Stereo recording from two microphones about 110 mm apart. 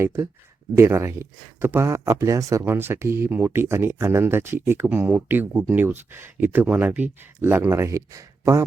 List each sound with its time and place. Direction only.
0.0 s speech: 25° right (ahead or behind)